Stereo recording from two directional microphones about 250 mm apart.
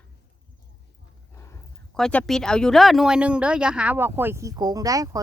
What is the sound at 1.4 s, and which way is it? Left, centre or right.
Speech, centre.